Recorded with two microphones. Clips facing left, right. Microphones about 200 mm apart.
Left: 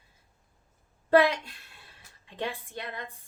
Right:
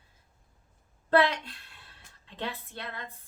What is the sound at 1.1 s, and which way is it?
A woman's voice, 10° left (ahead or behind).